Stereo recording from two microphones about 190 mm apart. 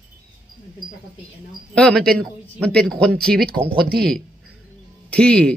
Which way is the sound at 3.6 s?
50° right (ahead or behind).